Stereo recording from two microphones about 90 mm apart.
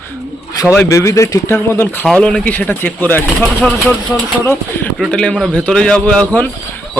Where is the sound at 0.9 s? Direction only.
35° left (ahead or behind).